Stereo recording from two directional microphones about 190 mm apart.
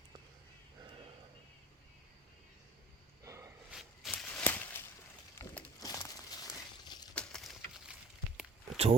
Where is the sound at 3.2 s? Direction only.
15° right (ahead or behind).